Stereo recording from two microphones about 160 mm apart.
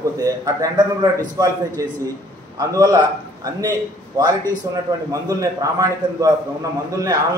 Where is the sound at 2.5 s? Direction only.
25° right (ahead or behind).